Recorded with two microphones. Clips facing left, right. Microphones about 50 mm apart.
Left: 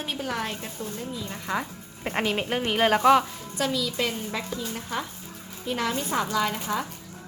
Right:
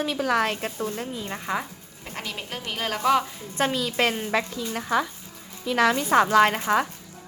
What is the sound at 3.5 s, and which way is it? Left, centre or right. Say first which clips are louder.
Speech: right 3 dB; right.